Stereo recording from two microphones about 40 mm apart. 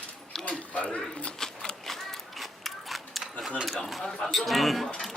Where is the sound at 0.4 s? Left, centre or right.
Left.